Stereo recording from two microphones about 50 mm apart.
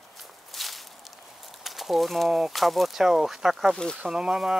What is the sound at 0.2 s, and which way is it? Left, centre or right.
Walk, centre.